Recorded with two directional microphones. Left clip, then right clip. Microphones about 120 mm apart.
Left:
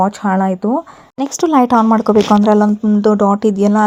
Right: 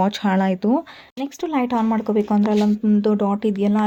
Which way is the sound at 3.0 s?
45° left (ahead or behind).